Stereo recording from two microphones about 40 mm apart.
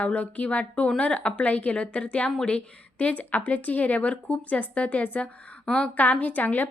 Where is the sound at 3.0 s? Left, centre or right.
Left.